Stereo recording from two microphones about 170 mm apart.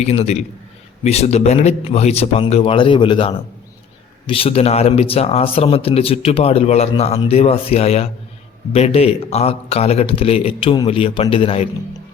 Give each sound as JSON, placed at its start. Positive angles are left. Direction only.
{"t": 0.0, "sound": "speech", "side_deg": 40}